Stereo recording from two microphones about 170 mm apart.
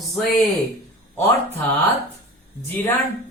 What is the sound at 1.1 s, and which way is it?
Speech, 10° left (ahead or behind).